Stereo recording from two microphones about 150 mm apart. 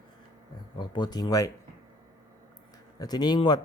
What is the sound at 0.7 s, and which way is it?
Speech, 30° left (ahead or behind).